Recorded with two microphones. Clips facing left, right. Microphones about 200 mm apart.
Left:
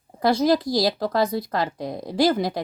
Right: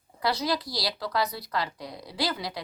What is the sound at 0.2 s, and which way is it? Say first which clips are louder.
Speech: left 9 dB; 50° left (ahead or behind).